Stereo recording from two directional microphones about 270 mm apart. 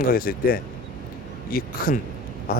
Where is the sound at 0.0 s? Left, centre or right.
Left.